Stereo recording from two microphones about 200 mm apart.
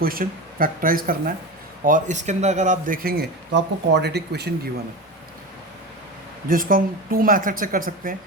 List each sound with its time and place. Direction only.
0.0 s a man's voice: 45° right (ahead or behind)
6.5 s a man's voice: 45° right (ahead or behind)